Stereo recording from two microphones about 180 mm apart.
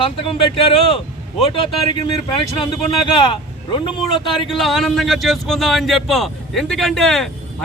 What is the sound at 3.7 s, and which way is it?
Speech, 25° left (ahead or behind).